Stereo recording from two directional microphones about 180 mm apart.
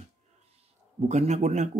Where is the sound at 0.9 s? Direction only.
40° right (ahead or behind).